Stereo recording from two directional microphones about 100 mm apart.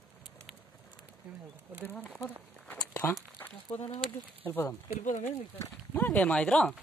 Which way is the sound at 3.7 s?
90° left.